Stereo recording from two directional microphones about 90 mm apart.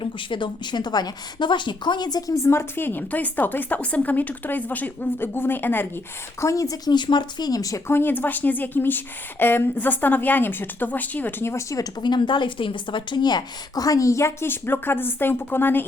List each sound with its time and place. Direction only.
0.0 s speech: 65° left (ahead or behind); by 5.9 s 25° left (ahead or behind)
6.4 s speech: 35° left (ahead or behind)
7.9 s speech: 20° left (ahead or behind)
11.9 s a woman's voice: 55° left (ahead or behind); by 15.9 s 25° left (ahead or behind)